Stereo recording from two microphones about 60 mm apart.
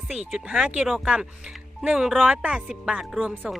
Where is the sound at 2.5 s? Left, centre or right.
Centre.